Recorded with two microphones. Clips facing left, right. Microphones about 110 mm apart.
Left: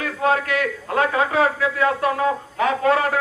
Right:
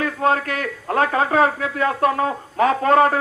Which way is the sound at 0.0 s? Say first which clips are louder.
Right 1 dB; 40° right (ahead or behind).